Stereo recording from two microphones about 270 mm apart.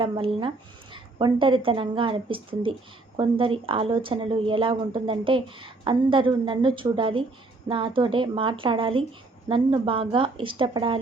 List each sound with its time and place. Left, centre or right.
0.0 s speech: centre